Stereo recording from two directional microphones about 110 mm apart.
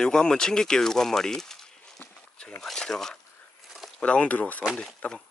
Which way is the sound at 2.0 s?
20° left (ahead or behind).